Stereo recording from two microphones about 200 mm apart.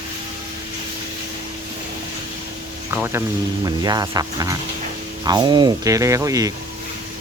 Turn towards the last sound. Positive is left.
turn(degrees=-15)  # may be behind; listen again after turning